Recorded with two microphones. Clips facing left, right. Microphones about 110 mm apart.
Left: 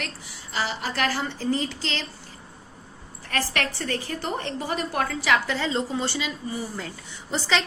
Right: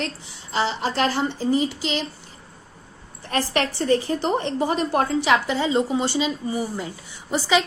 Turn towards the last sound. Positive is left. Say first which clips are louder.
# right 5 dB
turn(degrees=-10)  # may be behind; listen again after turning